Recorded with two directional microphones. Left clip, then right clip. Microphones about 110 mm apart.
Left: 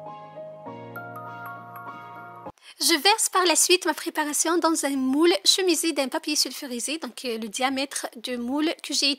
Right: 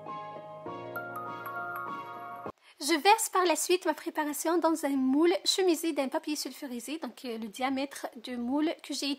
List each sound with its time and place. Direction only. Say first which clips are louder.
2.8 s speech: left 4 dB; 35° left (ahead or behind)